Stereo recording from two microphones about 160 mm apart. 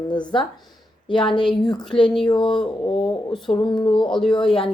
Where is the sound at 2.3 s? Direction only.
30° left (ahead or behind).